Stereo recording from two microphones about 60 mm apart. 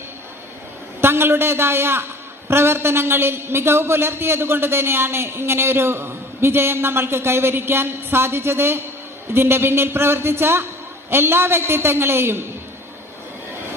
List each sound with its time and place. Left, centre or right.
1.0 s a man's voice: right